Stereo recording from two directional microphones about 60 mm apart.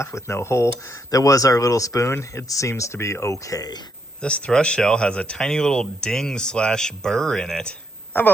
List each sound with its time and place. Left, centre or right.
0.0 s speech: left
1.1 s speech: left
2.0 s speech: left
2.5 s speech: left
4.2 s speech: centre
8.1 s speech: left